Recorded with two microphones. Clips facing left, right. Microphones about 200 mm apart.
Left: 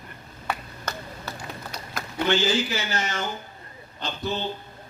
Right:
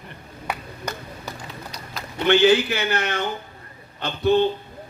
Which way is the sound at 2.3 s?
60° right (ahead or behind).